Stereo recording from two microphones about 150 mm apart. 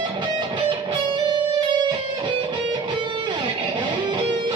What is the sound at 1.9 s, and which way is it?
Music, 30° right (ahead or behind).